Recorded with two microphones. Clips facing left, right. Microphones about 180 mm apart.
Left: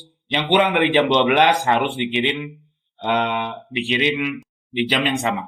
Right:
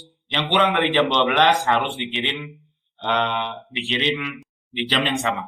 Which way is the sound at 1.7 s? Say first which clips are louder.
Left 3 dB; centre (ahead or behind).